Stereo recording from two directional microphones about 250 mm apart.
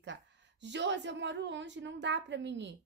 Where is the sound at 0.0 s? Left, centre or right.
Right.